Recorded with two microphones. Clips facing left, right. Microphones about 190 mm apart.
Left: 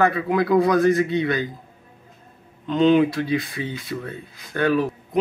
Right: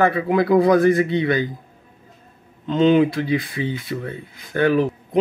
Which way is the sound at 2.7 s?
25° right (ahead or behind).